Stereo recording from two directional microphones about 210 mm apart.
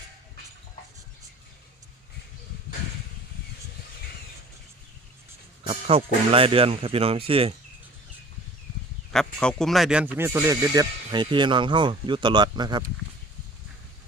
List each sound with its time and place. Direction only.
5.9 s speech: 25° right (ahead or behind)
9.1 s speech: 5° left (ahead or behind); by 12.8 s 20° right (ahead or behind)